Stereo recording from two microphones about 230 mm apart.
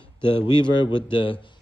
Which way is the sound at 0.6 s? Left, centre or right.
Left.